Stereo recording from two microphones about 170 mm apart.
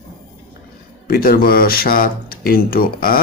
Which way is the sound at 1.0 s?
65° left (ahead or behind).